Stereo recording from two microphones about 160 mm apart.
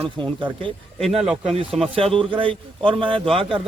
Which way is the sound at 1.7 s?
35° right (ahead or behind).